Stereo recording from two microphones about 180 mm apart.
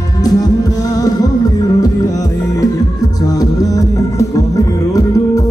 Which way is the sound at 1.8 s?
20° left (ahead or behind).